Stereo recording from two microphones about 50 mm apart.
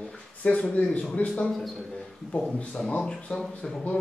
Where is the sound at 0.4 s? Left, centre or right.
Left.